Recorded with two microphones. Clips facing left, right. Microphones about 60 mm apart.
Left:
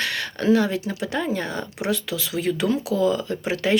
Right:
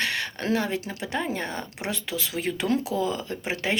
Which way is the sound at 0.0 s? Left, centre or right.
Right.